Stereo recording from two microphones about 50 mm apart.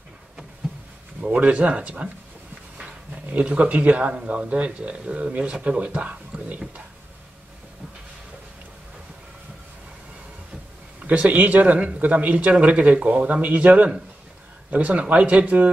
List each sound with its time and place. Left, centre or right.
1.2 s speech: right
3.3 s speech: right
11.1 s speech: right